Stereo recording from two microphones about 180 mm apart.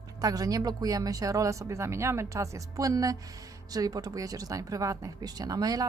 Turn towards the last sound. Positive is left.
turn(degrees=-20)  # may be behind; listen again after turning